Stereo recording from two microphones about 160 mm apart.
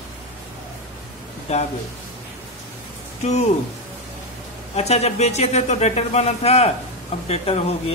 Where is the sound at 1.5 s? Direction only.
40° left (ahead or behind).